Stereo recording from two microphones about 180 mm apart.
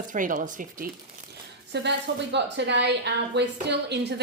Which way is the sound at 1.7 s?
75° right (ahead or behind).